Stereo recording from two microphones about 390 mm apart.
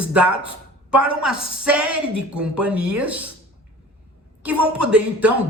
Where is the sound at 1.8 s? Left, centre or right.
Right.